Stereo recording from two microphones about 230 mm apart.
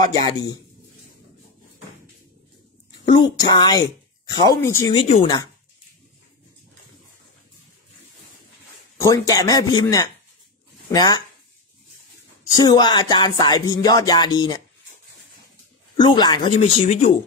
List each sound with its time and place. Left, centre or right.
0.0 s music: centre
3.1 s speech: centre
4.3 s music: centre
4.9 s speech: left
9.0 s music: centre
12.5 s music: centre
16.0 s speech: centre
16.5 s speech: left